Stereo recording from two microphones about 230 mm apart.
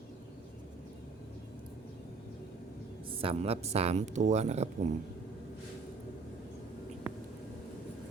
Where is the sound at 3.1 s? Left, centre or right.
Right.